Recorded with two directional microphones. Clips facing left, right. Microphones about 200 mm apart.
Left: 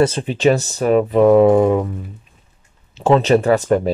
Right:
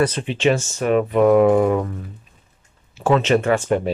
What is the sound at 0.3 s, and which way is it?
Speech, 40° left (ahead or behind).